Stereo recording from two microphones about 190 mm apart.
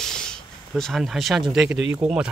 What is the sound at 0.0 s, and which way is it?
Speech, 5° left (ahead or behind).